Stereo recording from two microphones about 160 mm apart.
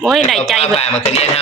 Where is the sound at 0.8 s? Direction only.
40° left (ahead or behind).